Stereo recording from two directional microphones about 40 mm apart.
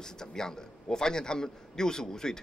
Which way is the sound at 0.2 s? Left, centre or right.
Centre.